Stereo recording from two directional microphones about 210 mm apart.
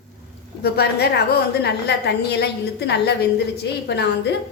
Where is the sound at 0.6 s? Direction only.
50° left (ahead or behind).